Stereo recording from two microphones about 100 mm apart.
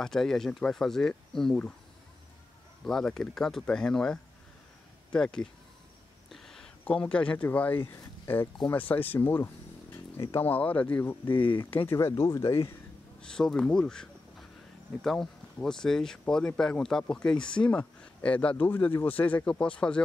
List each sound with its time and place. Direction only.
0.0 s speech: 5° left (ahead or behind)
2.8 s speech: 5° left (ahead or behind)
6.3 s a sound: centre (ahead or behind)
6.8 s speech: 10° left (ahead or behind)
11.2 s speech: 60° left (ahead or behind)
12.1 s speech: 30° left (ahead or behind)
13.2 s speech: 5° left (ahead or behind)